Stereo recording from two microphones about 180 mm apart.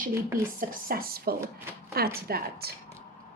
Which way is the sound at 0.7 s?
55° right (ahead or behind).